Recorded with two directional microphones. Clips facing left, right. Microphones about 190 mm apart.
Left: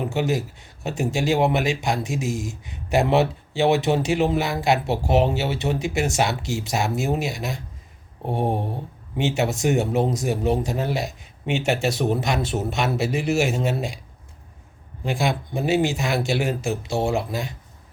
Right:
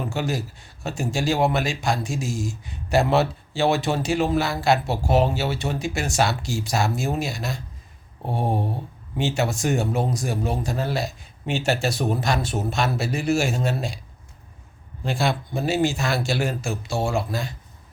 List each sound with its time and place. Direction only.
0.0 s a man's voice: 20° left (ahead or behind)
15.0 s speech: 15° left (ahead or behind)